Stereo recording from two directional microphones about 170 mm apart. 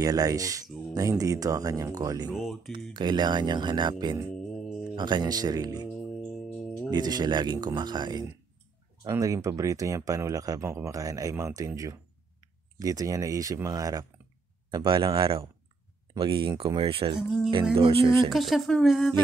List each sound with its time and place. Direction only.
0.0 s speech: 20° right (ahead or behind)
2.3 s speech: centre (ahead or behind)
2.9 s speech: 25° right (ahead or behind)
6.9 s speech: 25° right (ahead or behind)
18.3 s speech: centre (ahead or behind)